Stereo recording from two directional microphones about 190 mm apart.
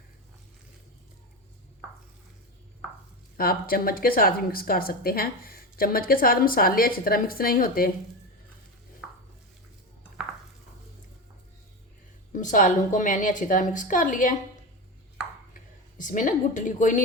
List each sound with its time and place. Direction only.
3.3 s a woman's voice: 50° left (ahead or behind)
12.3 s a woman's voice: 40° left (ahead or behind)
15.5 s a woman's voice: 45° left (ahead or behind)